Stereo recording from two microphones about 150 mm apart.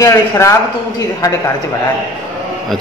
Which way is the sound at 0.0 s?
20° left (ahead or behind).